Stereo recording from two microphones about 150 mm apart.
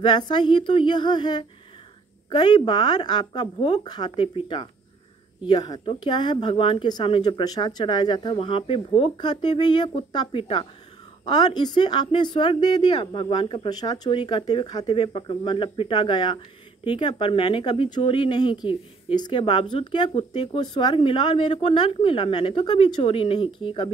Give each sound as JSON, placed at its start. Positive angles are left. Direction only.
{"t": 0.0, "sound": "a woman's voice", "side_deg": 30}